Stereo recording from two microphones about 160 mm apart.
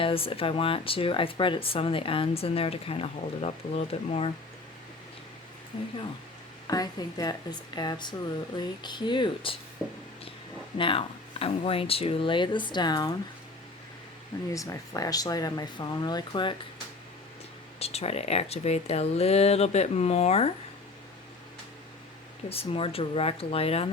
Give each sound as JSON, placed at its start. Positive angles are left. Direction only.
{"t": 0.0, "sound": "speech", "side_deg": 35}
{"t": 6.7, "sound": "speech", "side_deg": 25}
{"t": 9.8, "sound": "a sound", "side_deg": -5}
{"t": 10.8, "sound": "speech", "side_deg": 35}
{"t": 14.5, "sound": "speech", "side_deg": 20}
{"t": 17.7, "sound": "speech", "side_deg": 40}
{"t": 22.4, "sound": "speech", "side_deg": 35}